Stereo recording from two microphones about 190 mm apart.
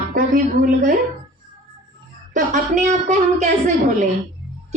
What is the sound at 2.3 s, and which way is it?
A woman's voice, 40° right (ahead or behind).